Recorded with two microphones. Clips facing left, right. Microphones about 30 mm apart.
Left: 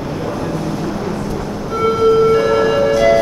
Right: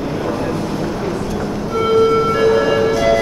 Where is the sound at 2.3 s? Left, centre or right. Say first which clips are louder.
Left 1 dB; centre.